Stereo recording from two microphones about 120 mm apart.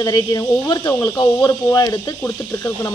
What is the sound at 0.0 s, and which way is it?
Speech, 35° left (ahead or behind).